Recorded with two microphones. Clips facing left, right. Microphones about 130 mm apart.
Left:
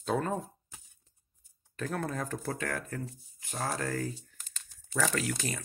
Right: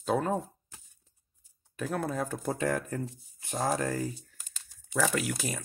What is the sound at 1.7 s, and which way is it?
Speech, 10° right (ahead or behind).